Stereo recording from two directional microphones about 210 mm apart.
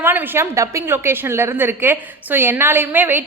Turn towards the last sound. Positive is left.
turn(degrees=-10)  # may be behind; listen again after turning